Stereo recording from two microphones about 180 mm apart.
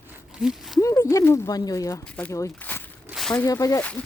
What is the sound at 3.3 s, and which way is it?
Speech, 15° left (ahead or behind).